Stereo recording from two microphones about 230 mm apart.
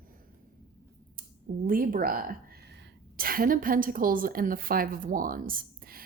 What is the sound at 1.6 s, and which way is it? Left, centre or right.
A woman's voice, right.